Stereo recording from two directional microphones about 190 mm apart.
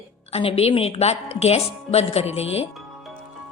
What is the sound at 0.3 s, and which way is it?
A woman's voice, 30° left (ahead or behind).